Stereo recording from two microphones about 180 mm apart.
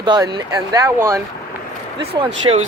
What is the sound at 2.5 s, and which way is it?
Speech, 25° right (ahead or behind).